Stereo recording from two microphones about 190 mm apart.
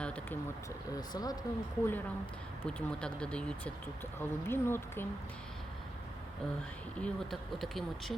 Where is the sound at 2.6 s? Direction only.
5° left (ahead or behind).